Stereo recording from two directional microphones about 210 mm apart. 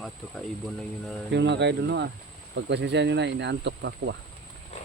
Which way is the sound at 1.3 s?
55° right (ahead or behind).